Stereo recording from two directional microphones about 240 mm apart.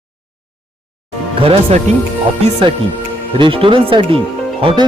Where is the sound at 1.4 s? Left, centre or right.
Right.